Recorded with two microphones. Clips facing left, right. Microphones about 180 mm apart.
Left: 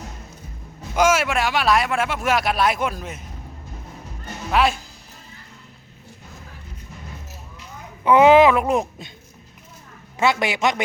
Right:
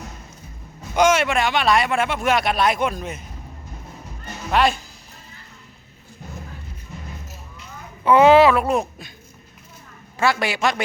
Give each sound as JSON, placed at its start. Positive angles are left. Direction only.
{"t": 0.9, "sound": "speech", "side_deg": 5}
{"t": 4.5, "sound": "speech", "side_deg": 5}
{"t": 8.0, "sound": "speech", "side_deg": 15}
{"t": 10.2, "sound": "a man's voice", "side_deg": 20}